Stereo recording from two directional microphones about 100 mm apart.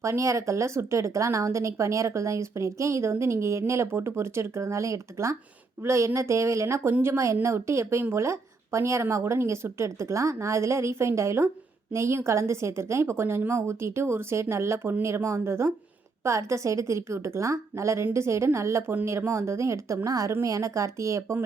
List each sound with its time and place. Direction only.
0.0 s a woman's voice: 30° right (ahead or behind)